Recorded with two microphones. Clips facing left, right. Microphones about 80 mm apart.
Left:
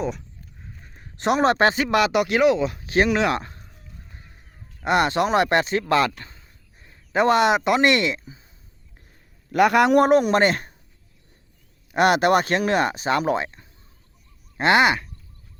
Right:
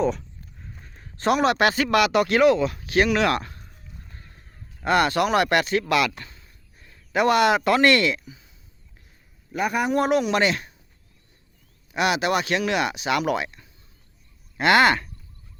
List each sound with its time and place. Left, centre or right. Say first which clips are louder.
0.9 s speech: even; left
4.1 s a sound: even; centre
5.9 s a man's voice: left 2 dB; left
9.5 s a man's voice: left 7 dB; left
10.0 s speech: left 4 dB; left
11.9 s speech: left 5 dB; left